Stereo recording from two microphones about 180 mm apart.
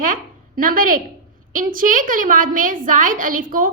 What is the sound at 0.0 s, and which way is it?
A woman's voice, 50° right (ahead or behind).